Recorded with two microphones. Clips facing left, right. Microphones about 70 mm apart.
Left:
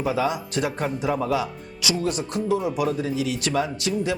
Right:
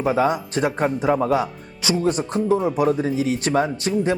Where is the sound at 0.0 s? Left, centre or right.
Right.